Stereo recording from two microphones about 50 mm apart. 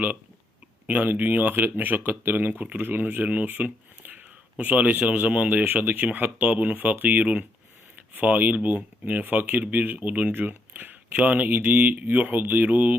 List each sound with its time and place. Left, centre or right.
0.9 s speech: right